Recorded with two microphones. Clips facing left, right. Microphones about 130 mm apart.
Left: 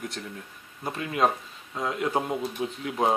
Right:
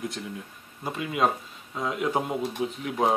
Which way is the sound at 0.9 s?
5° right (ahead or behind).